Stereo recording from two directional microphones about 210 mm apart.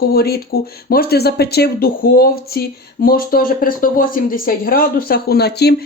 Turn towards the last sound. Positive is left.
turn(degrees=50)  # may be behind; listen again after turning